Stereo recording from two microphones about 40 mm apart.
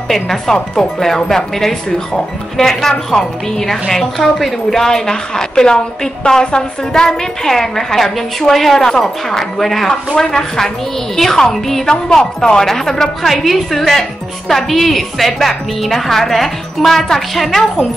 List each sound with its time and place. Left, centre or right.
0.1 s a woman's voice: centre
9.8 s a woman's voice: centre
11.8 s a woman's voice: centre